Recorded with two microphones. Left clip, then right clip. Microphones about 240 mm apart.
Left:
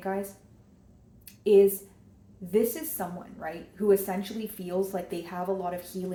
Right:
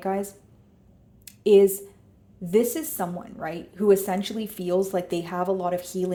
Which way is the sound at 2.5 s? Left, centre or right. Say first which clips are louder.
Right 4 dB; right.